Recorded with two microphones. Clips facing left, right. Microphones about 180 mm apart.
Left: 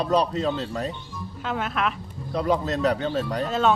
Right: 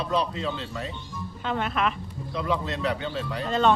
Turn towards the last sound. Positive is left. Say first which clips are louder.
# even
turn(degrees=5)  # may be behind; listen again after turning